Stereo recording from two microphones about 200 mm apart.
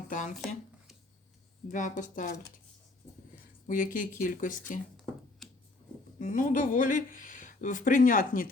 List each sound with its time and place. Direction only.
0.1 s speech: 40° left (ahead or behind)
1.6 s speech: 40° left (ahead or behind)
3.7 s speech: 40° left (ahead or behind)
5.4 s a sound: centre (ahead or behind)
6.1 s speech: 40° left (ahead or behind)